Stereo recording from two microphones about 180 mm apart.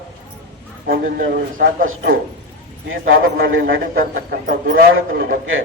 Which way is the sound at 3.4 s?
90° right.